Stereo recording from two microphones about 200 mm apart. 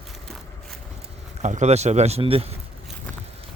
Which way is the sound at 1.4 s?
35° right (ahead or behind).